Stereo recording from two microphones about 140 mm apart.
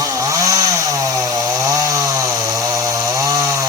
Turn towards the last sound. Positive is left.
turn(degrees=-25)  # may be behind; listen again after turning